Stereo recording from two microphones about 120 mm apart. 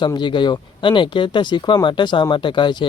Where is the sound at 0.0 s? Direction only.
40° left (ahead or behind).